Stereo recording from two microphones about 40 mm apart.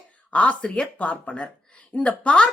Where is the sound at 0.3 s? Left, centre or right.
Left.